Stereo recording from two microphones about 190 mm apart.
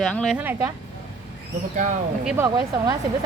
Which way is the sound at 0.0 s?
5° left (ahead or behind).